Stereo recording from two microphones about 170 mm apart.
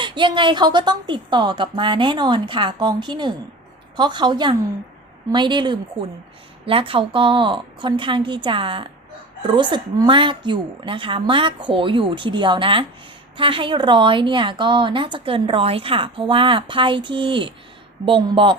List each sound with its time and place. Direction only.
0.0 s a woman's voice: 30° right (ahead or behind)